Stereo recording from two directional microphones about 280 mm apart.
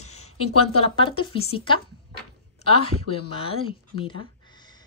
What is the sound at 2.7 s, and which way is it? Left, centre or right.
Speech, left.